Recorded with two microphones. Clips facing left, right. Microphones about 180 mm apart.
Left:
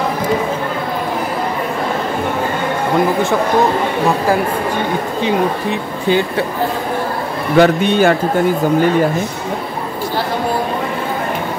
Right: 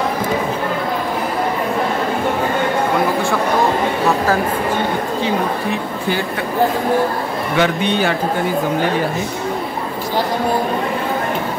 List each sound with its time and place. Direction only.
5.2 s speech: 20° left (ahead or behind)
7.5 s a man's voice: 45° left (ahead or behind)